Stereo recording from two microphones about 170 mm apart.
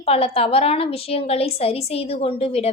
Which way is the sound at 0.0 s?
35° left (ahead or behind).